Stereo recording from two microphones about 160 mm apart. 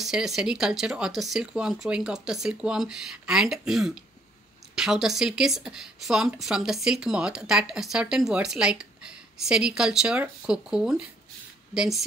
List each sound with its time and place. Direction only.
0.0 s speech: centre (ahead or behind)